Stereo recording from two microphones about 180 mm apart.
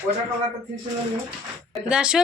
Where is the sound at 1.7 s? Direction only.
5° right (ahead or behind).